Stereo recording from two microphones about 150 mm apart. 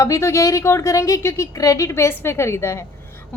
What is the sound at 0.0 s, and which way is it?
A woman's voice, 20° left (ahead or behind).